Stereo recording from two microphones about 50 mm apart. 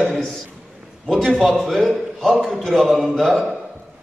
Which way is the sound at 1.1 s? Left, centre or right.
Centre.